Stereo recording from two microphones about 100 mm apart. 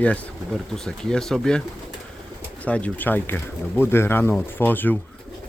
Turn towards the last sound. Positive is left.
turn(degrees=20)  # may be behind; listen again after turning